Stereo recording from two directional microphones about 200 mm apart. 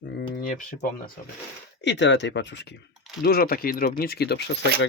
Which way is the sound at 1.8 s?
60° left (ahead or behind).